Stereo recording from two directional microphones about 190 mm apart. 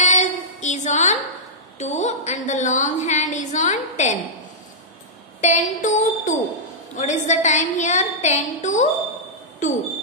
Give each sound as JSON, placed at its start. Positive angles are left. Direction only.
{"t": 0.0, "sound": "a sound", "side_deg": 40}
{"t": 1.8, "sound": "a woman's voice", "side_deg": 35}
{"t": 5.4, "sound": "a woman's voice", "side_deg": 40}